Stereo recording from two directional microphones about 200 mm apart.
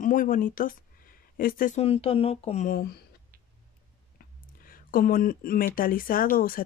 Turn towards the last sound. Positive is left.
turn(degrees=45)  # may be behind; listen again after turning